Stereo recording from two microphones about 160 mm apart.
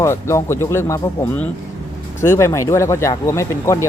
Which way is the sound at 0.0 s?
20° left (ahead or behind).